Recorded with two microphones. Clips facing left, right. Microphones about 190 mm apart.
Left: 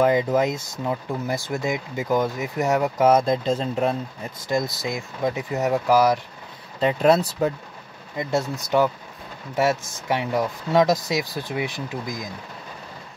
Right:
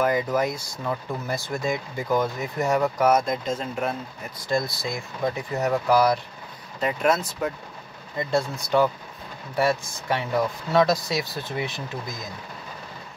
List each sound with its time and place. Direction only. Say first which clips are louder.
0.0 s speech: left 4 dB; 25° left (ahead or behind)
3.1 s speech: left 3 dB; 30° left (ahead or behind)
4.5 s speech: left 1 dB; 15° left (ahead or behind)
6.8 s speech: left 5 dB; 30° left (ahead or behind)
8.2 s speech: even; 15° left (ahead or behind)